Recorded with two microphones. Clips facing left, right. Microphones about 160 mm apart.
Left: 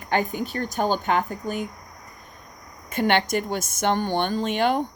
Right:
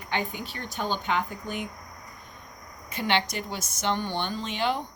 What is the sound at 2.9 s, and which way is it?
A woman's voice, 50° left (ahead or behind).